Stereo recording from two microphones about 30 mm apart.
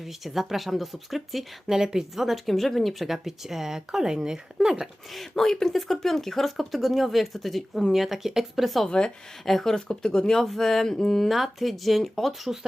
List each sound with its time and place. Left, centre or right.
0.0 s speech: centre
1.6 s speech: centre
2.1 s speech: centre
5.3 s speech: centre
8.9 s speech: left
9.4 s a sound: centre
9.7 s speech: centre
10.4 s a sound: centre
11.3 s speech: centre